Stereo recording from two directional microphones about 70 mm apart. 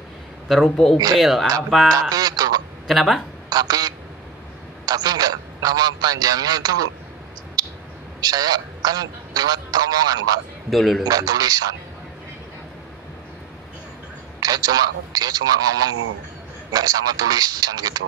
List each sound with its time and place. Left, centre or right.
0.7 s speech: centre
1.9 s speech: right
2.9 s speech: centre
3.4 s quack: right
4.8 s a man's voice: right
7.6 s a sound: right
8.2 s a man's voice: right
10.7 s speech: centre
11.1 s a man's voice: right
14.4 s a man's voice: right